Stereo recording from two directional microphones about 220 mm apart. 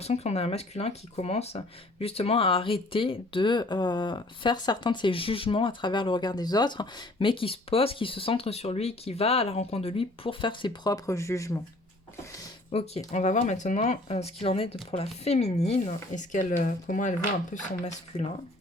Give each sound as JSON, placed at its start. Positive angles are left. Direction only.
{"t": 0.0, "sound": "speech", "side_deg": 30}
{"t": 12.7, "sound": "speech", "side_deg": 30}